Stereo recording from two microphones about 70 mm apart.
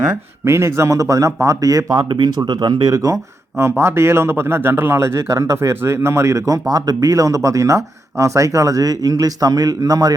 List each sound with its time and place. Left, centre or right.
0.4 s a man's voice: right
2.2 s speech: right
2.9 s speech: right
3.6 s a man's voice: right